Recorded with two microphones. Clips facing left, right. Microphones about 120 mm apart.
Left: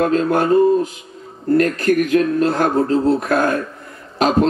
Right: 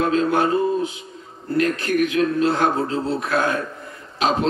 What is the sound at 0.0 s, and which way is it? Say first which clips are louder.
Speech: left 3 dB; 45° left (ahead or behind).